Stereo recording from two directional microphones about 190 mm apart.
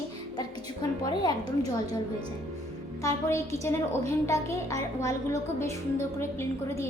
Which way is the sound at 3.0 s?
15° left (ahead or behind).